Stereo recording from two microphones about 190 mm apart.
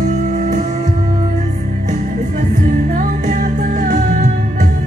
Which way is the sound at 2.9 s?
40° right (ahead or behind).